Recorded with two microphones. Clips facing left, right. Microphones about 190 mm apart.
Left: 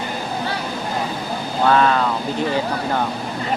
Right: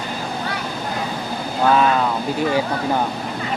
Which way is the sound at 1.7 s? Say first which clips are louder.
Even; 10° right (ahead or behind).